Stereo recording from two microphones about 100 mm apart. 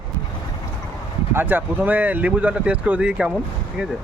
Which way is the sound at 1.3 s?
20° right (ahead or behind).